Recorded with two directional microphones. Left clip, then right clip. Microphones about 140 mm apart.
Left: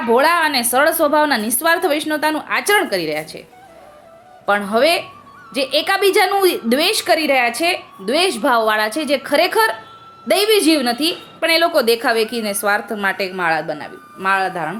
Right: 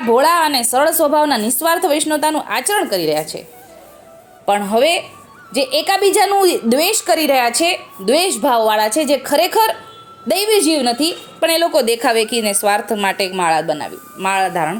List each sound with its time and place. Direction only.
0.1 s a woman's voice: 15° right (ahead or behind)
4.4 s a woman's voice: 15° right (ahead or behind)